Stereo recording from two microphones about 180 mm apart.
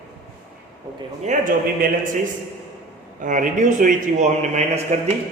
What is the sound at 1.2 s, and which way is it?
Speech, 45° right (ahead or behind).